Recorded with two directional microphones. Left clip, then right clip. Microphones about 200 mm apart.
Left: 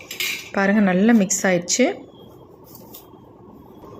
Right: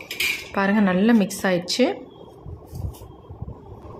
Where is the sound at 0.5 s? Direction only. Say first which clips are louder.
Left 5 dB; 10° left (ahead or behind).